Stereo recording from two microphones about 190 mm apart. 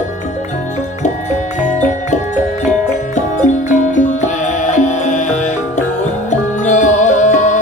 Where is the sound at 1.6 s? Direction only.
40° left (ahead or behind).